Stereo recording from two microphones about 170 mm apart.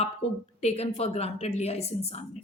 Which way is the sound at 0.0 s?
40° left (ahead or behind).